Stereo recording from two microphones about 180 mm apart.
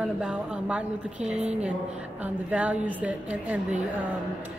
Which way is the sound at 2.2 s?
5° right (ahead or behind).